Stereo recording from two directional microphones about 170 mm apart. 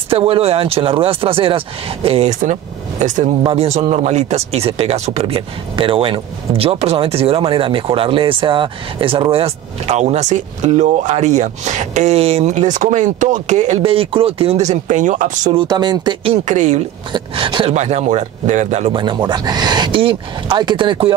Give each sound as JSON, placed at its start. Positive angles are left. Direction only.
{"t": 0.1, "sound": "a woman's voice", "side_deg": -35}
{"t": 15.5, "sound": "speech", "side_deg": -25}
{"t": 16.4, "sound": "a woman's voice", "side_deg": -45}
{"t": 17.1, "sound": "speech", "side_deg": -30}
{"t": 17.7, "sound": "speech", "side_deg": -40}
{"t": 18.9, "sound": "speech", "side_deg": -25}